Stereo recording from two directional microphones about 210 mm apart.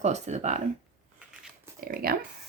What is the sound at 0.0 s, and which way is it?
Speech, 35° right (ahead or behind).